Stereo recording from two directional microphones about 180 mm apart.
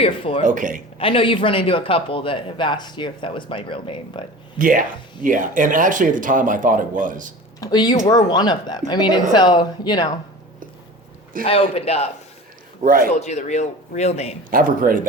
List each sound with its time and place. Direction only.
0.0 s speech: 30° left (ahead or behind)
0.4 s speech: 45° right (ahead or behind)
0.9 s speech: 30° left (ahead or behind)
4.5 s speech: 50° right (ahead or behind)
7.6 s speech: 20° left (ahead or behind)
11.4 s speech: 35° left (ahead or behind)
12.8 s speech: 50° right (ahead or behind)
13.1 s speech: 40° left (ahead or behind)
14.5 s speech: 50° right (ahead or behind)